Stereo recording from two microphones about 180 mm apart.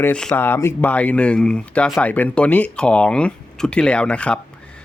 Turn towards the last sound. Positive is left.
turn(degrees=5)  # may be behind; listen again after turning